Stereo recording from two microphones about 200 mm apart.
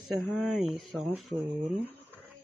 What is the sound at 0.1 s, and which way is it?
Speech, centre (ahead or behind).